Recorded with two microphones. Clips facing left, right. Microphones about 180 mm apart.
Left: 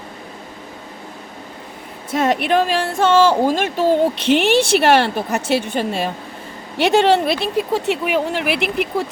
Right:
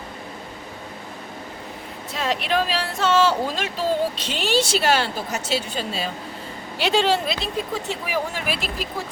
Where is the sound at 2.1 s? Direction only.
55° left (ahead or behind).